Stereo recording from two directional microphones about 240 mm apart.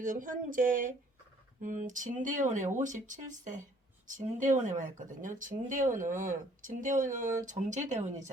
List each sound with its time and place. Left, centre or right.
0.0 s speech: right